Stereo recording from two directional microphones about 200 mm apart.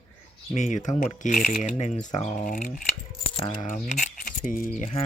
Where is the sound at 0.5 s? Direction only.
35° left (ahead or behind).